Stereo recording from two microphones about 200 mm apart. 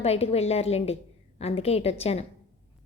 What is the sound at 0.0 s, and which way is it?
A woman's voice, 30° left (ahead or behind).